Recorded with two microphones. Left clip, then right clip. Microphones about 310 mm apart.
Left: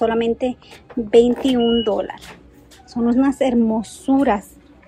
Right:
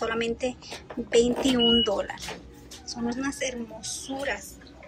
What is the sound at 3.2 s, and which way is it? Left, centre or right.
A woman's voice, centre.